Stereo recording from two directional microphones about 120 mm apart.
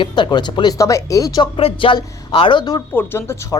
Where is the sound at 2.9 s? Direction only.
20° left (ahead or behind).